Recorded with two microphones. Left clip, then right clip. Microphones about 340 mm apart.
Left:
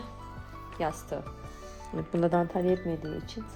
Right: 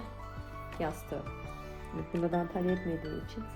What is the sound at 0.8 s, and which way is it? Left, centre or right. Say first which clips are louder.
Speech: left 4 dB; left.